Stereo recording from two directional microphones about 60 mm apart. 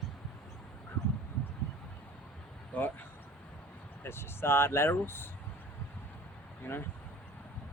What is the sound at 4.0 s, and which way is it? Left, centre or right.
Speech, left.